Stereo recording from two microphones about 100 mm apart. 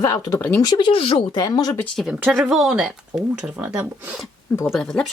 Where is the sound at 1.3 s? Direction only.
45° left (ahead or behind).